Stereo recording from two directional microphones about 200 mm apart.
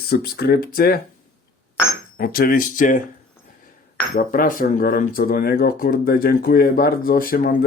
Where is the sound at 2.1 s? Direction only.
45° left (ahead or behind).